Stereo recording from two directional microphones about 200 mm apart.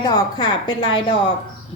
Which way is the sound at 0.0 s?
20° left (ahead or behind).